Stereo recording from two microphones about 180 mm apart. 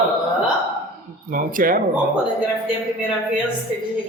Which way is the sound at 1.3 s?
50° right (ahead or behind).